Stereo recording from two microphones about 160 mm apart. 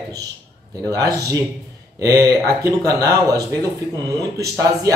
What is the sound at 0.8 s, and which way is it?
Speech, 20° right (ahead or behind).